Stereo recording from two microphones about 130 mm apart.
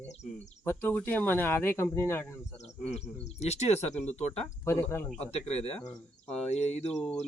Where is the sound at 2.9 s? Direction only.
55° left (ahead or behind).